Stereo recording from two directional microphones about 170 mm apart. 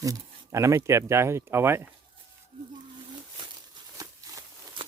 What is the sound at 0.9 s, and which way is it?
Speech, 15° right (ahead or behind).